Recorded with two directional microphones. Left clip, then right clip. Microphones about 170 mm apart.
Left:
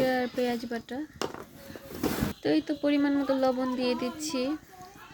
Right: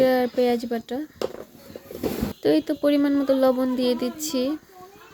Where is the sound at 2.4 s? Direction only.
30° right (ahead or behind).